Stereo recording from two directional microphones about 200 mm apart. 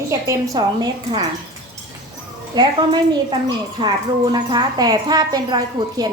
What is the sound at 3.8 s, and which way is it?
A woman's voice, 20° right (ahead or behind).